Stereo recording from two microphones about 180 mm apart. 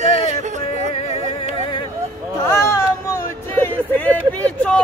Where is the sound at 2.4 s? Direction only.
15° left (ahead or behind).